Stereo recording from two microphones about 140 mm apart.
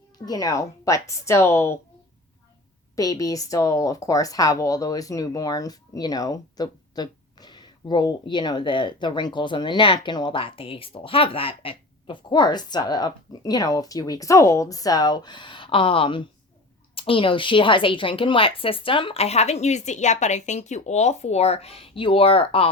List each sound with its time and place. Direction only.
0.3 s speech: 25° left (ahead or behind)
2.9 s a woman's voice: 25° left (ahead or behind); by 22.7 s 40° left (ahead or behind)